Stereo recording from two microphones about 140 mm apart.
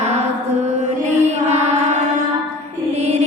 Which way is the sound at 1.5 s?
50° right (ahead or behind).